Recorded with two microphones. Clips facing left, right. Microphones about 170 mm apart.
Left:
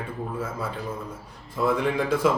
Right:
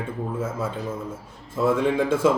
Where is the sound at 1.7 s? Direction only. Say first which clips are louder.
Right 3 dB; 25° right (ahead or behind).